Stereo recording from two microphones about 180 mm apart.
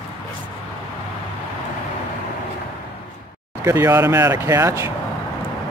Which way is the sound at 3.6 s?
15° right (ahead or behind).